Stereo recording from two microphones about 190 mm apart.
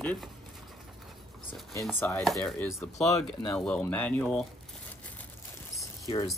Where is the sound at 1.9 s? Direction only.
15° left (ahead or behind).